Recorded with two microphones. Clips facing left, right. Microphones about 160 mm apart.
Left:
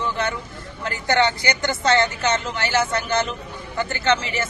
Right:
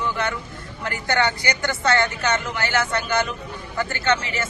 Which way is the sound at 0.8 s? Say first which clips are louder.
Left 2 dB; 25° left (ahead or behind).